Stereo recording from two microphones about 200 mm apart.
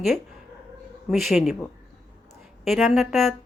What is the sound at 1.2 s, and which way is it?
Speech, centre (ahead or behind).